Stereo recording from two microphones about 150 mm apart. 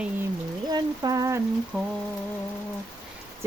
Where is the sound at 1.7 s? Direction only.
Centre (ahead or behind).